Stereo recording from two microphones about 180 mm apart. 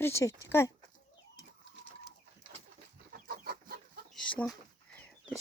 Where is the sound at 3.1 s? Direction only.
55° right (ahead or behind).